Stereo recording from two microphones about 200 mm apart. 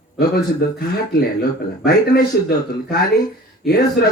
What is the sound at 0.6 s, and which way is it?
Speech, 50° left (ahead or behind).